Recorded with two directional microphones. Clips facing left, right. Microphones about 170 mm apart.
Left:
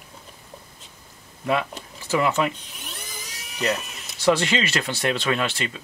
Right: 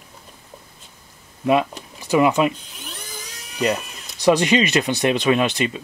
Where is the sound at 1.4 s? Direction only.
15° right (ahead or behind).